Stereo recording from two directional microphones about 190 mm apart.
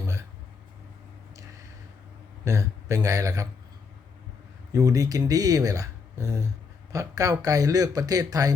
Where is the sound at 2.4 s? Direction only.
15° right (ahead or behind).